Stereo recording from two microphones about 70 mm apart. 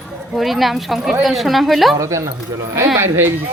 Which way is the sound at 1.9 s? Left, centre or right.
Right.